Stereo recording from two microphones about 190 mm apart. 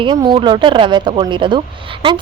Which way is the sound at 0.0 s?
25° right (ahead or behind).